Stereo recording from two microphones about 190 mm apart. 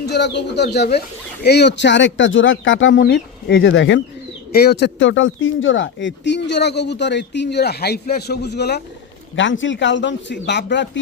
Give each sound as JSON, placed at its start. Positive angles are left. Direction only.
{"t": 0.0, "sound": "speech", "side_deg": 60}
{"t": 4.5, "sound": "speech", "side_deg": 55}
{"t": 9.3, "sound": "speech", "side_deg": 80}